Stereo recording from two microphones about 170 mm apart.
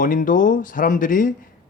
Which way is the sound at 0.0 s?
50° left (ahead or behind).